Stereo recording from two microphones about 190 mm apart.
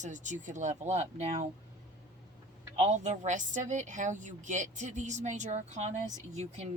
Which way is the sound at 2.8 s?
35° right (ahead or behind).